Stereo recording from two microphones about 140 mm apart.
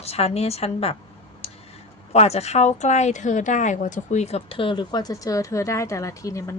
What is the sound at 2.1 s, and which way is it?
A woman's voice, 50° left (ahead or behind).